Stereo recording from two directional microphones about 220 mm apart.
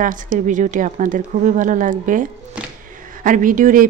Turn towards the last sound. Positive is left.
turn(degrees=-35)  # may be behind; listen again after turning